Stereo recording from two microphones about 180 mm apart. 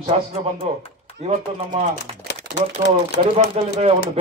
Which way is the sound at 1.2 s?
40° right (ahead or behind).